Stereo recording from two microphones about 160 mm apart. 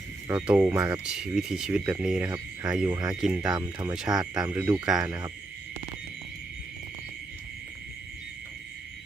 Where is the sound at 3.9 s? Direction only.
5° right (ahead or behind).